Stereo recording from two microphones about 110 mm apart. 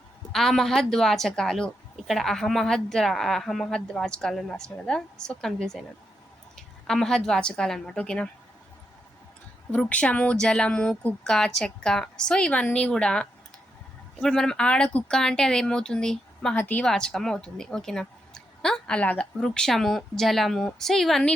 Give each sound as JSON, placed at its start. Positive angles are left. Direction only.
{"t": 0.3, "sound": "a woman's voice", "side_deg": 0}
{"t": 9.7, "sound": "a woman's voice", "side_deg": 15}
{"t": 16.8, "sound": "a woman's voice", "side_deg": 5}